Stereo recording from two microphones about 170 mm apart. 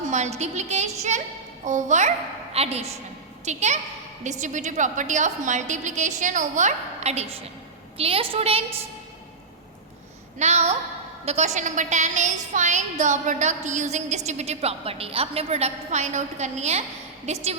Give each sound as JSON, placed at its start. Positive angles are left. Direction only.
{"t": 0.1, "sound": "a woman's voice", "side_deg": -40}
{"t": 10.3, "sound": "a woman's voice", "side_deg": -40}